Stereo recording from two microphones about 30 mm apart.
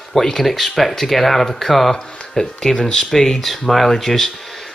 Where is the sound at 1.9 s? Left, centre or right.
Left.